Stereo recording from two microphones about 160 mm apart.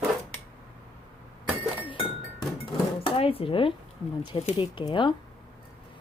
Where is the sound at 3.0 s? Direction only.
35° left (ahead or behind).